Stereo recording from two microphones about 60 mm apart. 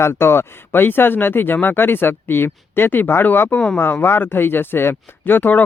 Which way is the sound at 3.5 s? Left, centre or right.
Centre.